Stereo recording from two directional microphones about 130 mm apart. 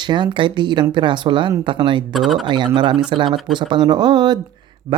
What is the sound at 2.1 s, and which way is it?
Speech, centre (ahead or behind).